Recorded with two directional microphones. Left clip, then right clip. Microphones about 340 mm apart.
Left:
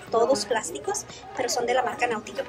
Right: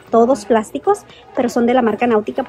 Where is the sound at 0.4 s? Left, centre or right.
Centre.